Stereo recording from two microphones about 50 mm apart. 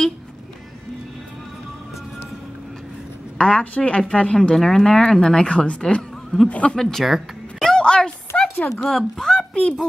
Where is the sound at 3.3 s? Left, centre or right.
Left.